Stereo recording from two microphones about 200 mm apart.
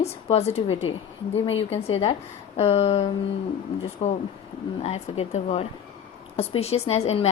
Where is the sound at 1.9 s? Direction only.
30° left (ahead or behind).